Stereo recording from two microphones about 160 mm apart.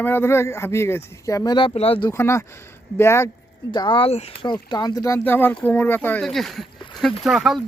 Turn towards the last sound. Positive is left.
turn(degrees=0)  # may be behind; listen again after turning